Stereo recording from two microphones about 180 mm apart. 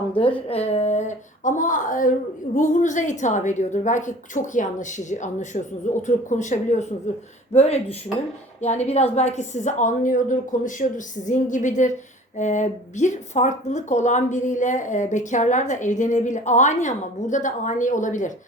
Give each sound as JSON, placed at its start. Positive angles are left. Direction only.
{"t": 0.1, "sound": "a woman's voice", "side_deg": 30}